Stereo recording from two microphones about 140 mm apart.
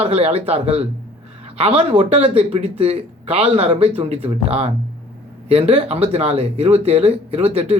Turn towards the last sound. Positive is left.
turn(degrees=-45)  # may be behind; listen again after turning